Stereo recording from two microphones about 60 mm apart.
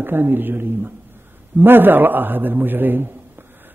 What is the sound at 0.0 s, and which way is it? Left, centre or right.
Speech, right.